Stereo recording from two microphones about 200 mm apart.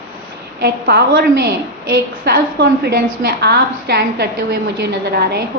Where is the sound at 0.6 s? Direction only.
50° right (ahead or behind).